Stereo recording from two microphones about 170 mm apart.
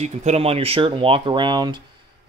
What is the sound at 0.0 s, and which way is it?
Speech, 40° right (ahead or behind).